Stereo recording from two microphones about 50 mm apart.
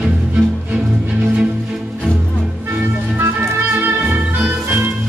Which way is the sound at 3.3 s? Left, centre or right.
Right.